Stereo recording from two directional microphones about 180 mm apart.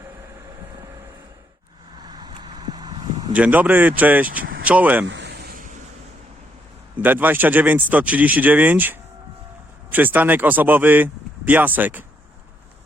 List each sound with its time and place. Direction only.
2.0 s vehicle: 25° right (ahead or behind)
3.3 s speech: 10° right (ahead or behind)
5.0 s a sound: 75° right (ahead or behind); by 5.8 s 45° right (ahead or behind)
6.9 s speech: 10° right (ahead or behind)